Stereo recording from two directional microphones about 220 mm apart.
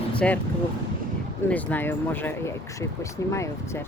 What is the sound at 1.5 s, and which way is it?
Speech, 5° left (ahead or behind).